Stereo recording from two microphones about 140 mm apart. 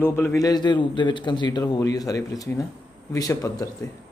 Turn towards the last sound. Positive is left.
turn(degrees=25)  # may be behind; listen again after turning